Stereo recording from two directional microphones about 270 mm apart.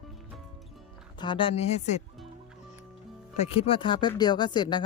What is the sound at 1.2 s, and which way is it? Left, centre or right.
Speech, centre.